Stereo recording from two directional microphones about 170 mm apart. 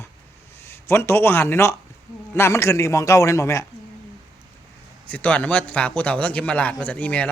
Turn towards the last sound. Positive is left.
turn(degrees=10)  # may be behind; listen again after turning